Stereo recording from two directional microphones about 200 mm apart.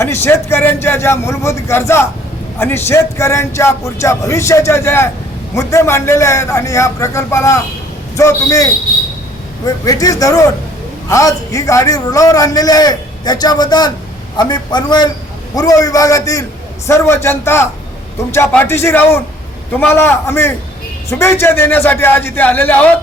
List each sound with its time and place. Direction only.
0.0 s a man's voice: 10° left (ahead or behind)